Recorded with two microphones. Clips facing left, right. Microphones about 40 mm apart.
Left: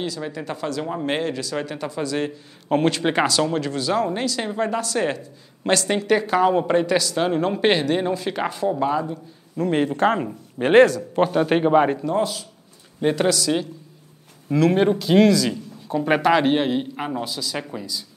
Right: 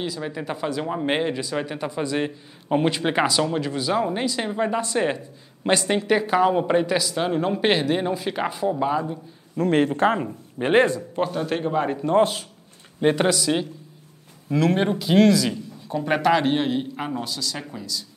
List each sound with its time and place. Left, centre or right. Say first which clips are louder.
0.0 s speech: left 1 dB; centre
5.9 s speech: left 1 dB; centre
9.6 s speech: right 1 dB; right
9.8 s speech: left 1 dB; centre
10.1 s speech: left 1 dB; centre
11.3 s a man's voice: left 9 dB; left
12.0 s speech: right 3 dB; right
13.0 s speech: even; centre
14.5 s speech: left 3 dB; centre
16.0 s speech: left 2 dB; centre